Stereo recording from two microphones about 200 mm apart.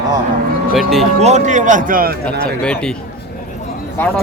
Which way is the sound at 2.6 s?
5° left (ahead or behind).